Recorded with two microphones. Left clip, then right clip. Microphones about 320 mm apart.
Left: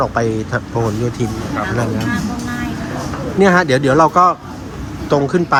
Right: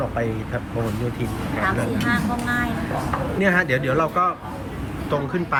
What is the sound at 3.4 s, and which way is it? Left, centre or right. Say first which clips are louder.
Speech: left 9 dB; centre.